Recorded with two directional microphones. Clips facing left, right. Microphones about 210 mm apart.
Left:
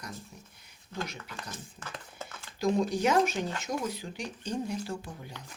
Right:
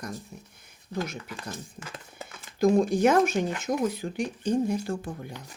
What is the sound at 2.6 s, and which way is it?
Speech, 50° right (ahead or behind).